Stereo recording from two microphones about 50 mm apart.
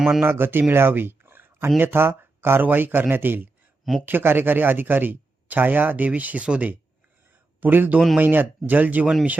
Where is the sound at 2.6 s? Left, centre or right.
Right.